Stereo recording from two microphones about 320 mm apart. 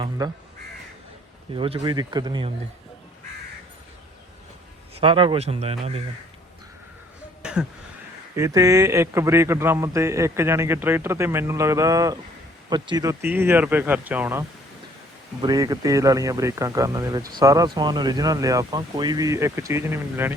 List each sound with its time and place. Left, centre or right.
0.2 s a man's voice: centre
1.5 s a man's voice: centre
4.9 s a man's voice: centre
7.4 s a sound: centre
8.4 s a man's voice: centre